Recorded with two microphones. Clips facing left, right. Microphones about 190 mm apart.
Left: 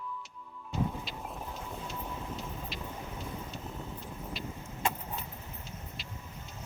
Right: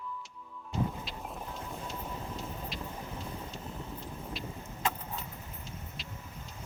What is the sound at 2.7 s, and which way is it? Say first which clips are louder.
Vehicle: right 1 dB; centre (ahead or behind).